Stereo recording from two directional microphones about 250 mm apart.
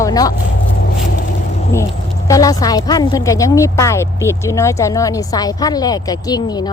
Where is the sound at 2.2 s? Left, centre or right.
Centre.